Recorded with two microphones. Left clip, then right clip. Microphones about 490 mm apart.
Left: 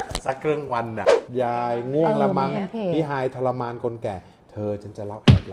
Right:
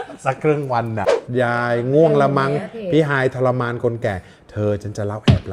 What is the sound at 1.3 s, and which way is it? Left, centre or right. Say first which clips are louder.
A man's voice: right 5 dB; right.